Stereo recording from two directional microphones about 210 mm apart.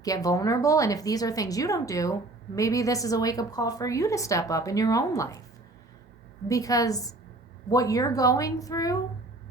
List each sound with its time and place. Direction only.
0.0 s a woman's voice: 15° left (ahead or behind)
6.5 s a woman's voice: 15° left (ahead or behind)